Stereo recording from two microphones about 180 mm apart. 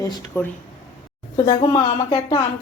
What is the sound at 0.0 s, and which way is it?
A woman's voice, 15° left (ahead or behind).